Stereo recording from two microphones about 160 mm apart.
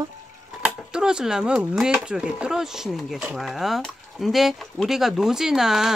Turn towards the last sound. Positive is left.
turn(degrees=-5)  # may be behind; listen again after turning